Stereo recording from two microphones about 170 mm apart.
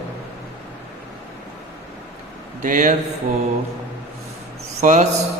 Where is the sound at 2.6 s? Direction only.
50° right (ahead or behind).